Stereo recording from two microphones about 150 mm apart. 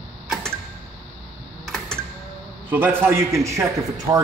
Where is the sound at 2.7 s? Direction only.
15° right (ahead or behind).